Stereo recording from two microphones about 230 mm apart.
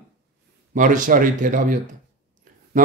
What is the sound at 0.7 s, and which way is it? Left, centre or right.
A man's voice, right.